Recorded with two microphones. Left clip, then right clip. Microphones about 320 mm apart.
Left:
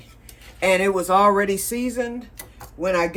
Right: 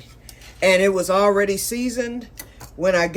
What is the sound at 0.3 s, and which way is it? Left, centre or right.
Speech, centre.